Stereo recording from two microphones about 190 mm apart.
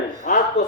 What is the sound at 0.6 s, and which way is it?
Speech, 65° left (ahead or behind).